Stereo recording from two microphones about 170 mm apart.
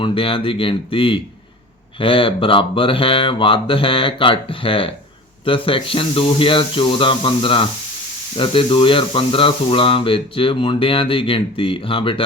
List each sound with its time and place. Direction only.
0.0 s speech: 30° left (ahead or behind)